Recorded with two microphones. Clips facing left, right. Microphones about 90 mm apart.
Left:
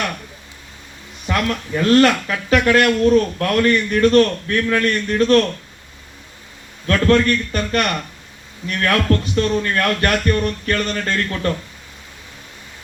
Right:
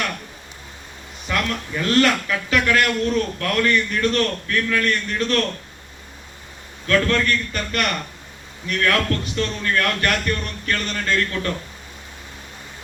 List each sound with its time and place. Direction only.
1.3 s a man's voice: 35° left (ahead or behind)
6.8 s a man's voice: 35° left (ahead or behind)